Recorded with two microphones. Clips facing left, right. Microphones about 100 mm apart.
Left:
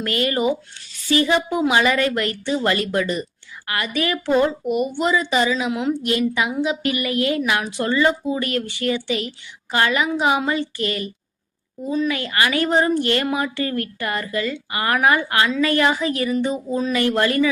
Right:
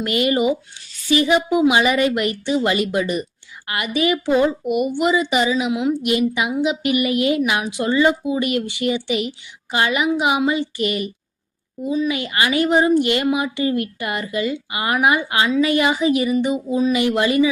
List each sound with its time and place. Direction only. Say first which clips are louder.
0.0 s a woman's voice: right 2 dB; 20° right (ahead or behind)